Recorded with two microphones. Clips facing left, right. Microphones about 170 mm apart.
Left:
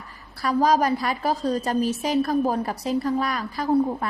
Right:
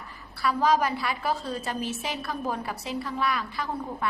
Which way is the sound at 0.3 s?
40° left (ahead or behind).